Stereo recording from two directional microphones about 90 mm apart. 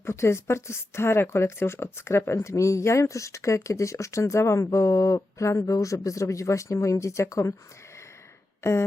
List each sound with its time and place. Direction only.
0.0 s a woman's voice: 30° left (ahead or behind)
8.6 s a woman's voice: 30° left (ahead or behind)